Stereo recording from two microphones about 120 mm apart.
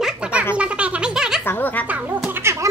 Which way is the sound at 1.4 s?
15° left (ahead or behind).